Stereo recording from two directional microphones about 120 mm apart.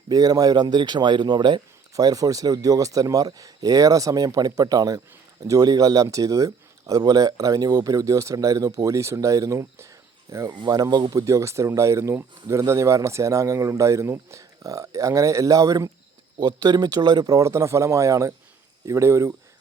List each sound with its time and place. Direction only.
0.1 s speech: 30° right (ahead or behind)
10.5 s speech: 35° right (ahead or behind)